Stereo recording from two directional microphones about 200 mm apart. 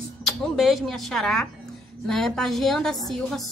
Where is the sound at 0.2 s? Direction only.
Centre (ahead or behind).